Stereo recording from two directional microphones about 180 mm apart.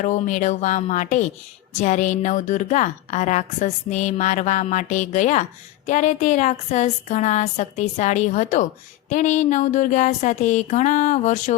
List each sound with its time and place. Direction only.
0.0 s a woman's voice: 45° left (ahead or behind)